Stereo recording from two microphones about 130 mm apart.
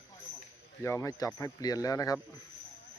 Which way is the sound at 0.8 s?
20° left (ahead or behind).